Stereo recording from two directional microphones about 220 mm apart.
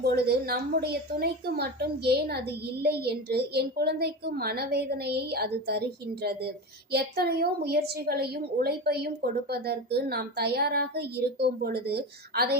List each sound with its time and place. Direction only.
0.0 s a woman's voice: 45° right (ahead or behind)
6.9 s a woman's voice: 45° right (ahead or behind)